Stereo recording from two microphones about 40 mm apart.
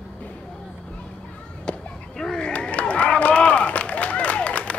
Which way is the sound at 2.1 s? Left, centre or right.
Centre.